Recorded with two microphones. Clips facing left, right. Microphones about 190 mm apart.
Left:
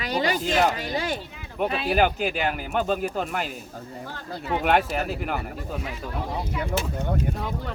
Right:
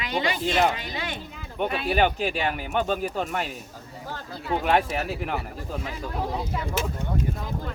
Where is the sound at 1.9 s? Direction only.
5° left (ahead or behind).